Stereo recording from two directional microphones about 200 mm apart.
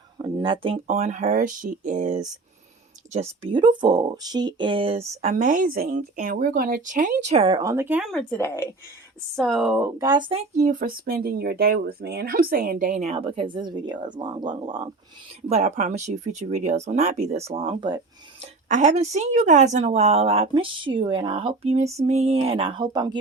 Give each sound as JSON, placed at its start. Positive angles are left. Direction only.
{"t": 0.2, "sound": "speech", "side_deg": -20}
{"t": 3.4, "sound": "speech", "side_deg": -25}
{"t": 10.0, "sound": "speech", "side_deg": -20}
{"t": 10.6, "sound": "speech", "side_deg": -40}
{"t": 13.1, "sound": "speech", "side_deg": -30}
{"t": 15.4, "sound": "speech", "side_deg": -35}
{"t": 18.7, "sound": "speech", "side_deg": -35}